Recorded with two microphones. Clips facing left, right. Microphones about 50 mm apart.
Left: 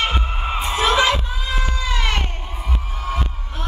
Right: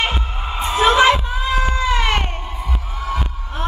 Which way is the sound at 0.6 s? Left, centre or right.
Right.